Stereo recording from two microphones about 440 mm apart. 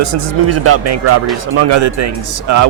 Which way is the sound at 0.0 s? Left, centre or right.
Right.